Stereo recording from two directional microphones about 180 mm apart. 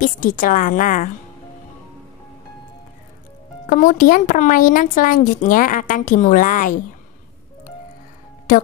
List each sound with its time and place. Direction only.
0.0 s speech: 50° left (ahead or behind)
3.6 s speech: 45° left (ahead or behind)